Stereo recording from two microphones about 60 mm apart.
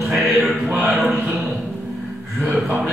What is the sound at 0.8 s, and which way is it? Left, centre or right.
Speech, right.